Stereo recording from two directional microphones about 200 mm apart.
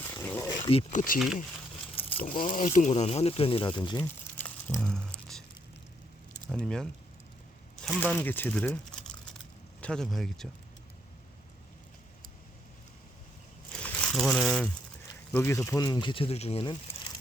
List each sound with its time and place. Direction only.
0.1 s wild animals: 10° left (ahead or behind)
0.7 s speech: 35° left (ahead or behind)
4.0 s crumpling: 10° left (ahead or behind)
6.5 s speech: 5° left (ahead or behind)
8.1 s speech: 10° left (ahead or behind)
13.7 s crumpling: 5° left (ahead or behind)
15.3 s speech: 10° left (ahead or behind); by 17.1 s 25° left (ahead or behind)